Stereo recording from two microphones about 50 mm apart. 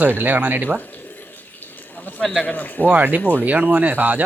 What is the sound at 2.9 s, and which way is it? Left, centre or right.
Speech, right.